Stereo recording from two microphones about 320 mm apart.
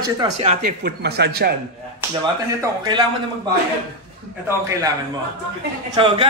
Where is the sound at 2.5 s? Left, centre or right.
Centre.